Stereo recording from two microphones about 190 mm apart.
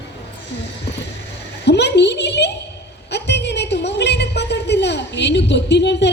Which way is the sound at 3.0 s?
65° left (ahead or behind).